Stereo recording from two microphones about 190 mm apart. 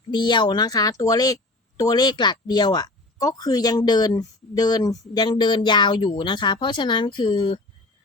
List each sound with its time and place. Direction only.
0.1 s a woman's voice: 25° left (ahead or behind)